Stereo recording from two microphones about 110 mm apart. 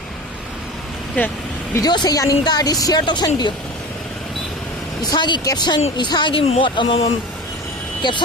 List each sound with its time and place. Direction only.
1.2 s speech: 15° left (ahead or behind)
1.7 s speech: 40° left (ahead or behind)
5.1 s speech: 45° left (ahead or behind)
8.0 s speech: 45° left (ahead or behind)